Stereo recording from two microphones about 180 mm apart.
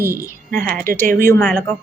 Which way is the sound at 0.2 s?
10° left (ahead or behind).